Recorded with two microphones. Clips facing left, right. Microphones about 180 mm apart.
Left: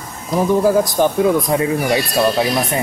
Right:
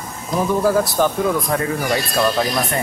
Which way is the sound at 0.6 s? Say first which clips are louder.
Left 1 dB; 15° left (ahead or behind).